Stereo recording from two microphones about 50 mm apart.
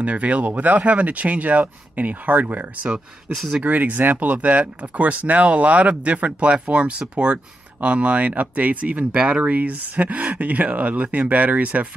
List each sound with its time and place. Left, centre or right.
0.0 s speech: right
3.3 s speech: centre
3.6 s speech: right